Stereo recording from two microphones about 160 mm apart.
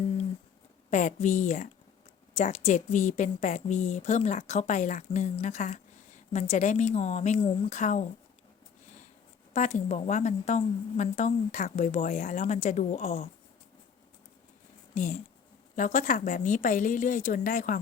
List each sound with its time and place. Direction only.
0.9 s a woman's voice: 50° left (ahead or behind)
9.5 s a woman's voice: 50° left (ahead or behind)
14.9 s a woman's voice: 50° left (ahead or behind)